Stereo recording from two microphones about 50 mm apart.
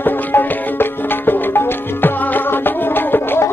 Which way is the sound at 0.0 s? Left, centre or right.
Left.